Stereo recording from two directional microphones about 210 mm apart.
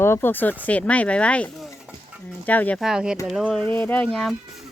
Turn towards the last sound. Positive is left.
turn(degrees=5)  # may be behind; listen again after turning